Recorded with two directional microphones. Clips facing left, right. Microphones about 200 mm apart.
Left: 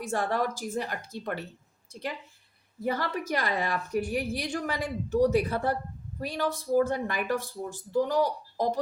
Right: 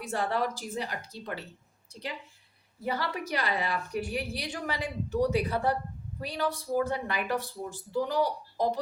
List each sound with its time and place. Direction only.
0.0 s a woman's voice: 45° left (ahead or behind)